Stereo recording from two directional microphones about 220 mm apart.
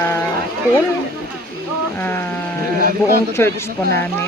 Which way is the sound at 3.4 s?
10° left (ahead or behind).